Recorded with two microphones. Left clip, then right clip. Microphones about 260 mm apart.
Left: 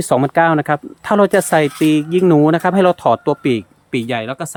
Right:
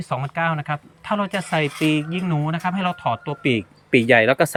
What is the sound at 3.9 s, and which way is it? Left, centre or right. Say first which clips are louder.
Speech: right 7 dB; centre.